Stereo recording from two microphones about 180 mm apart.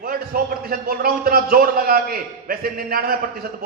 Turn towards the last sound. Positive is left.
turn(degrees=-55)  # may be behind; listen again after turning